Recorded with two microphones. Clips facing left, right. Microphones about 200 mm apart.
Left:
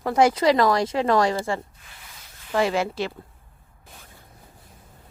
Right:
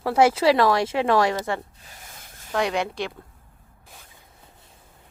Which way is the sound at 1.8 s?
40° right (ahead or behind).